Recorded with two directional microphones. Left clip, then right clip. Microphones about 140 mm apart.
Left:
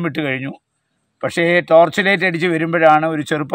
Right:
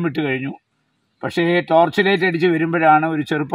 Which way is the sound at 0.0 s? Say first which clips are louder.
Left 1 dB; 15° left (ahead or behind).